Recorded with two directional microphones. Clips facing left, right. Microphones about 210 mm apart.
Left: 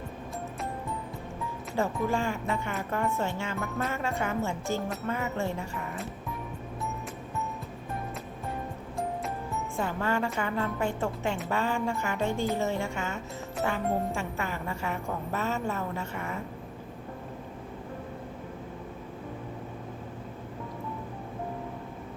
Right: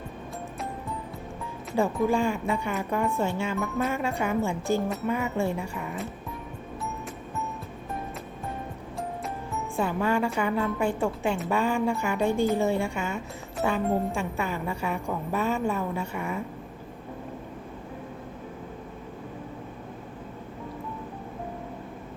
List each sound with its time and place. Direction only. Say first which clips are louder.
1.7 s speech: right 5 dB; 15° right (ahead or behind)
9.7 s speech: right 4 dB; 15° right (ahead or behind)